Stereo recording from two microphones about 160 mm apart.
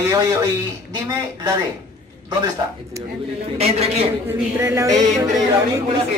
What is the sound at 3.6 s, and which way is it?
Speech, 40° right (ahead or behind).